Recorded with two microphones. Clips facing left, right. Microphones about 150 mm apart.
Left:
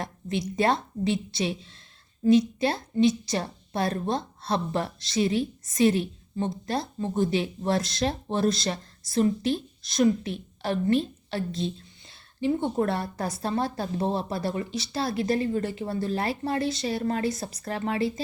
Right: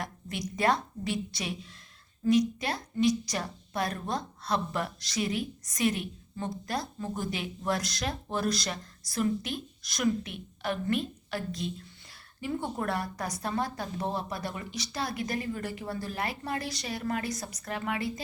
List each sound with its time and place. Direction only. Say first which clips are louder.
0.0 s a woman's voice: left 6 dB; 25° left (ahead or behind)